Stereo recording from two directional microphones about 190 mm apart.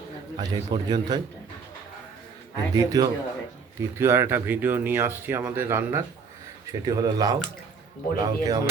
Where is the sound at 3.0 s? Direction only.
20° right (ahead or behind).